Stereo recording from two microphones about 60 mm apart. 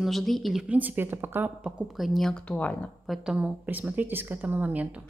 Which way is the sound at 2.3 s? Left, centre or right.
Left.